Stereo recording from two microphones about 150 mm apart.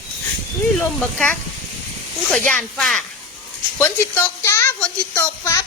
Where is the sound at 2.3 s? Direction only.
5° left (ahead or behind).